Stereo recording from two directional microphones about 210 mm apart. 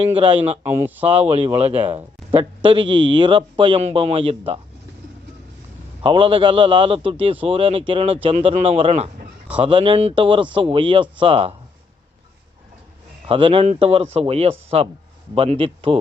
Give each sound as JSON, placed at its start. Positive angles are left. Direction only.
{"t": 0.0, "sound": "speech", "side_deg": -25}
{"t": 0.6, "sound": "speech", "side_deg": -10}
{"t": 1.0, "sound": "speech", "side_deg": -30}
{"t": 6.0, "sound": "speech", "side_deg": -25}
{"t": 13.2, "sound": "speech", "side_deg": -25}